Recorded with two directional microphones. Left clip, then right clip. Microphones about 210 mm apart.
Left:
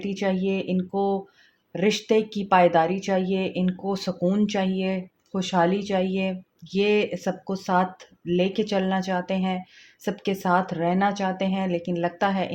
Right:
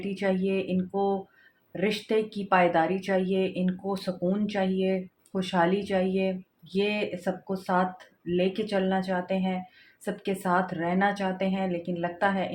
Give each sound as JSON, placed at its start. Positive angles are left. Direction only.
{"t": 0.0, "sound": "speech", "side_deg": 50}